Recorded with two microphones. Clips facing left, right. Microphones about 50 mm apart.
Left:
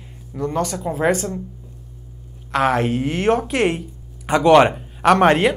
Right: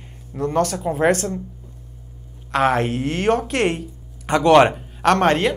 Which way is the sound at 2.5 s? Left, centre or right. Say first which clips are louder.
Even; centre.